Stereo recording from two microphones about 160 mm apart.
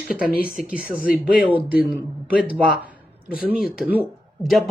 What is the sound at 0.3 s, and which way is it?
Speech, 65° left (ahead or behind).